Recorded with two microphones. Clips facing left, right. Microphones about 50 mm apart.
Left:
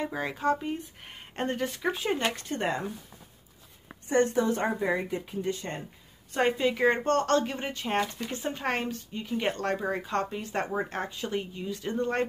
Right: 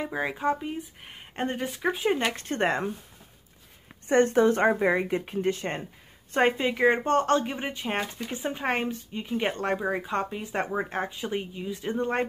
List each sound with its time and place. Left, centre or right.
0.1 s speech: centre
2.3 s speech: right
4.1 s speech: right
6.3 s a woman's voice: right
6.7 s speech: centre